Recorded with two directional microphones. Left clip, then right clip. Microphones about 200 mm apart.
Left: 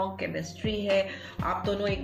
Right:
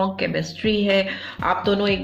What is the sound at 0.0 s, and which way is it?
Speech, 35° right (ahead or behind).